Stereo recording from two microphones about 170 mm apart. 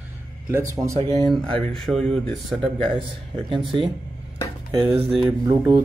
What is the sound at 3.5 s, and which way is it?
Speech, 30° right (ahead or behind).